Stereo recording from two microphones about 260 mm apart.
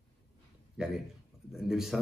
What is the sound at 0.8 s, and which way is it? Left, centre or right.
A man's voice, centre.